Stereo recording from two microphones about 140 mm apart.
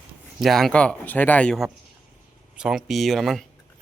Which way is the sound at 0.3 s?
Centre (ahead or behind).